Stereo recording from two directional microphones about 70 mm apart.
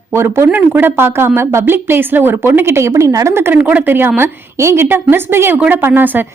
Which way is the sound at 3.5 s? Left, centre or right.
Right.